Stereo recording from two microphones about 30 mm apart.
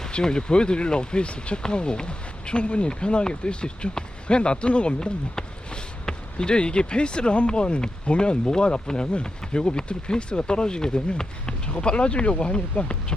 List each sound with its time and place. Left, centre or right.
0.1 s speech: left
1.6 s speech: left
4.9 s a sound: left
6.4 s speech: left
11.4 s speech: left